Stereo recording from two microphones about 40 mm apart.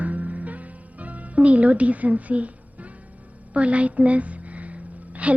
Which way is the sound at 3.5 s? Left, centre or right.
Right.